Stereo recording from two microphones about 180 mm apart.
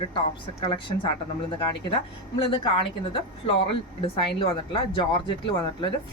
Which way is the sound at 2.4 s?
30° left (ahead or behind).